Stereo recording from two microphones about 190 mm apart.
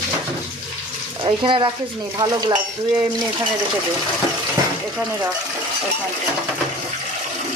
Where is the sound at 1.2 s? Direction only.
25° right (ahead or behind).